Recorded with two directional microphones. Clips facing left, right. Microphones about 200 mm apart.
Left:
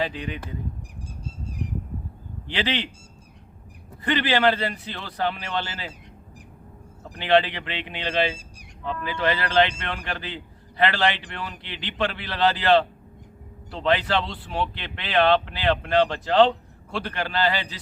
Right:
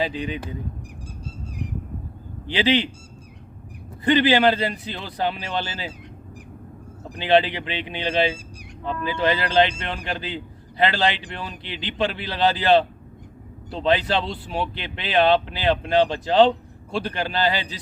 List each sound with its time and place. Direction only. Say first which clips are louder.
0.0 s speech: right 3 dB; 10° right (ahead or behind)
2.5 s speech: right 6 dB; 10° right (ahead or behind)
4.0 s speech: right 4 dB; 15° right (ahead or behind)
7.2 s speech: right 2 dB; 10° right (ahead or behind)